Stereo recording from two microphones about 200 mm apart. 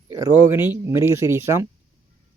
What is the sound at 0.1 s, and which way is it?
Speech, 15° right (ahead or behind).